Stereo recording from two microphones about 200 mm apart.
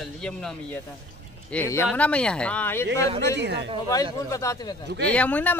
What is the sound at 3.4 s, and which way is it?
Speech, 60° right (ahead or behind).